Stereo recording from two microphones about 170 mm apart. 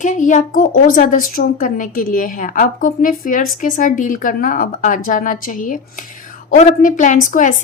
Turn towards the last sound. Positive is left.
turn(degrees=50)  # may be behind; listen again after turning